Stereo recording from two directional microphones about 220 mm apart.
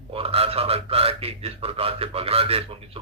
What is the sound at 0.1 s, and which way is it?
A man's voice, 25° right (ahead or behind).